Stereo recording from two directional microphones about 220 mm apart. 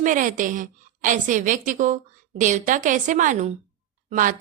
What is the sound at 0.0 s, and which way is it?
A woman's voice, 35° right (ahead or behind).